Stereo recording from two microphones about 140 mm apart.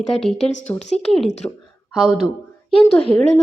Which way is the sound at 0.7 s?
25° left (ahead or behind).